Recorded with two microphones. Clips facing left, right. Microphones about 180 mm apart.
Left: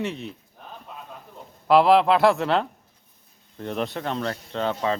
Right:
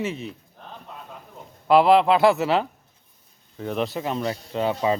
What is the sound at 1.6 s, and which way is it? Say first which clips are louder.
Speech: right 1 dB; centre (ahead or behind).